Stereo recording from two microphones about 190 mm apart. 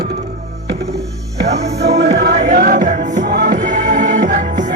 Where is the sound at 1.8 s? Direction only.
60° right (ahead or behind); by 3.2 s 45° right (ahead or behind).